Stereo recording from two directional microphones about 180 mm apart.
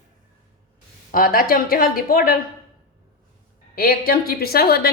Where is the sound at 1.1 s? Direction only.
55° left (ahead or behind).